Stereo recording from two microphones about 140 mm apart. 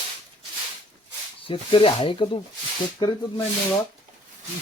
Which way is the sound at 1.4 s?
40° left (ahead or behind).